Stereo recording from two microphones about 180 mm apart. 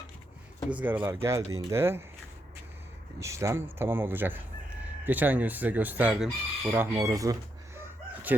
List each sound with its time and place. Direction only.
0.7 s speech: 10° right (ahead or behind)
3.2 s speech: 15° right (ahead or behind)
7.8 s chicken: 10° right (ahead or behind)